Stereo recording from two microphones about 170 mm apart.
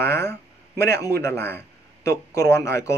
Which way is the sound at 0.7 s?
75° right (ahead or behind).